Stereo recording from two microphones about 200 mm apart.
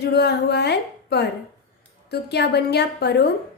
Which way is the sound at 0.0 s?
55° left (ahead or behind).